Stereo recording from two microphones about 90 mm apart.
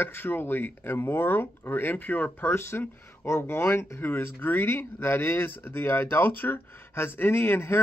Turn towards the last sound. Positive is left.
turn(degrees=25)  # may be behind; listen again after turning